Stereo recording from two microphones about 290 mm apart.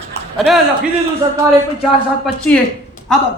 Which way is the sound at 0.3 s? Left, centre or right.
Centre.